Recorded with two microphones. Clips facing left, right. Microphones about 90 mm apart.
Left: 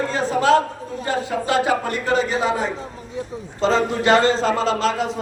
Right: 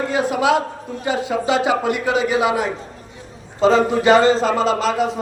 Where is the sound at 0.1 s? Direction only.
15° right (ahead or behind).